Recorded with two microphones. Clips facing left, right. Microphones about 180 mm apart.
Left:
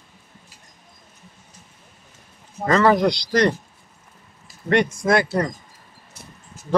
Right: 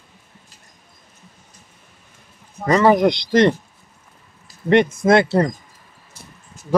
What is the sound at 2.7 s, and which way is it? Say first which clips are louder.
Speech: right 3 dB; 15° right (ahead or behind).